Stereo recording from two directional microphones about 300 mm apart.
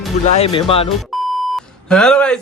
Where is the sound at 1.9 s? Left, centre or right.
Centre.